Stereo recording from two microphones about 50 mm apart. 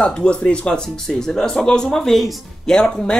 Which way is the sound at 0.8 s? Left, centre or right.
Centre.